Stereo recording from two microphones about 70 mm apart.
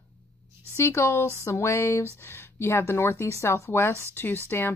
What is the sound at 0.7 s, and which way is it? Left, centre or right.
A woman's voice, left.